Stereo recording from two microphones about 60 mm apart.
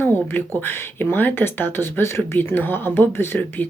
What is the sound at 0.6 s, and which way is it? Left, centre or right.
Speech, left.